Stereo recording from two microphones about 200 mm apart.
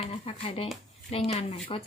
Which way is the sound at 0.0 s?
30° left (ahead or behind).